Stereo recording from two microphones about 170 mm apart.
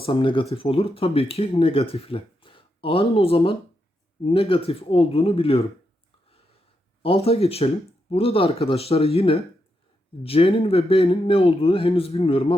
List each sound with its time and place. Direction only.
0.0 s speech: 30° left (ahead or behind)
7.0 s speech: 35° left (ahead or behind)